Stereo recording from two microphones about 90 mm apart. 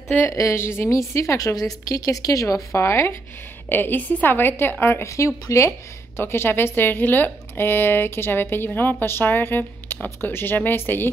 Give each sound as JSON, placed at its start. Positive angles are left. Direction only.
{"t": 0.3, "sound": "a woman's voice", "side_deg": 35}